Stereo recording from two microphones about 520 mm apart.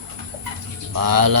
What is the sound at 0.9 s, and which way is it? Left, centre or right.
Mantra, right.